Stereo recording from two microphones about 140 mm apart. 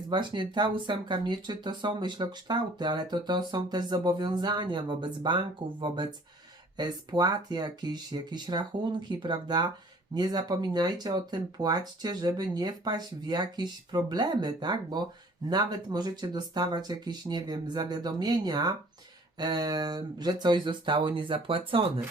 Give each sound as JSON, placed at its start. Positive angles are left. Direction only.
{"t": 0.1, "sound": "speech", "side_deg": -35}